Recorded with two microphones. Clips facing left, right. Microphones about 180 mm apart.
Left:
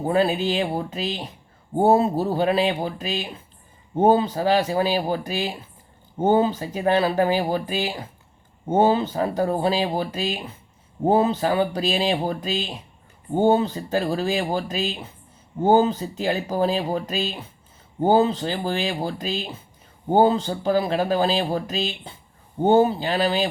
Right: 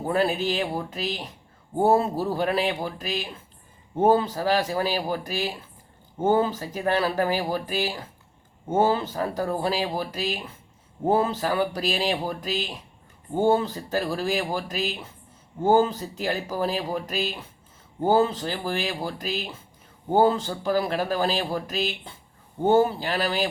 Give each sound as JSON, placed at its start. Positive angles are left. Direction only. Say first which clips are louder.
{"t": 0.0, "sound": "speech", "louder": "left 3 dB", "side_deg": 15}